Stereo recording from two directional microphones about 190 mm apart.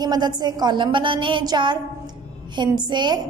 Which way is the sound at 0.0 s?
20° right (ahead or behind).